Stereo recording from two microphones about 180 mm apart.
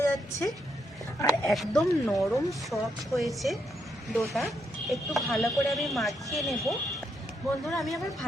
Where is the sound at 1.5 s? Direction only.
Centre (ahead or behind).